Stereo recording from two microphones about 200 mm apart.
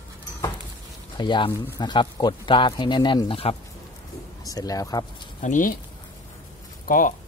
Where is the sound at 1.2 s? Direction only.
25° left (ahead or behind).